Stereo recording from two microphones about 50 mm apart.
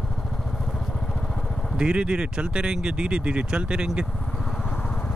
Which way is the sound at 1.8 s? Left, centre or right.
Right.